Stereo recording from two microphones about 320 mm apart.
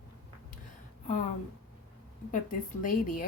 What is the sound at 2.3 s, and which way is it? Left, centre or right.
Speech, left.